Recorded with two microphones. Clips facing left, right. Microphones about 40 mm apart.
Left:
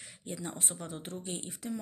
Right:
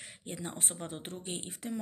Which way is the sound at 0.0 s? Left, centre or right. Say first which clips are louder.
Left 1 dB; right.